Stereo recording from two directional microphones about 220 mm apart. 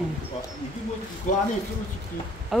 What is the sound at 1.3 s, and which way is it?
Speech, 35° left (ahead or behind).